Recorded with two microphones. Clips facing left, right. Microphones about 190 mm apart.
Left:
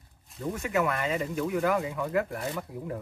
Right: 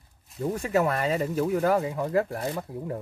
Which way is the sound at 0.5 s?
35° right (ahead or behind).